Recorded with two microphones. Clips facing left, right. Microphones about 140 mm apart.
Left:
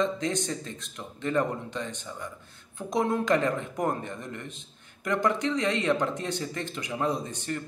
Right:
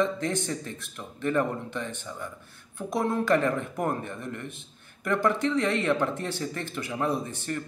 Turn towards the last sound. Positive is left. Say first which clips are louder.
# right 1 dB
turn(degrees=15)  # may be behind; listen again after turning